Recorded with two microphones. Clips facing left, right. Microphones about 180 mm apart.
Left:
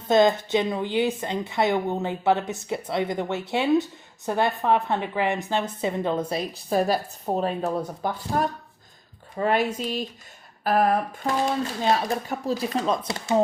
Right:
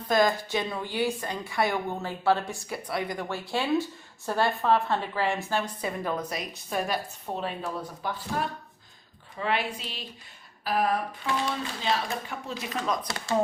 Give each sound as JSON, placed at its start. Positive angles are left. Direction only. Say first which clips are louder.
{"t": 0.0, "sound": "a woman's voice", "louder": "left 5 dB", "side_deg": 25}